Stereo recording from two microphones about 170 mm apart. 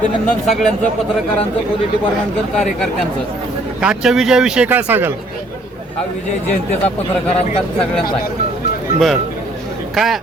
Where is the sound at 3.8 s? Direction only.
5° right (ahead or behind).